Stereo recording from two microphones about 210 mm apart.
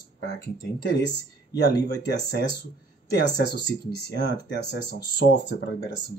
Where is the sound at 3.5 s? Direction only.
55° left (ahead or behind).